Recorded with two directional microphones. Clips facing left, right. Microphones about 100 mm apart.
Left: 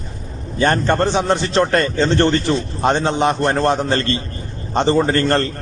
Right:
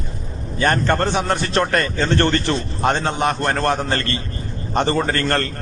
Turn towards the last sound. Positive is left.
turn(degrees=25)  # may be behind; listen again after turning